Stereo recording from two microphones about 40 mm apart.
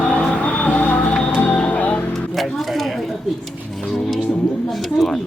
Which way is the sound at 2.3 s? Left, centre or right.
Centre.